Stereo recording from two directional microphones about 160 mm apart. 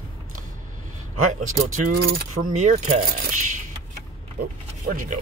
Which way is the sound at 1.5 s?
50° right (ahead or behind).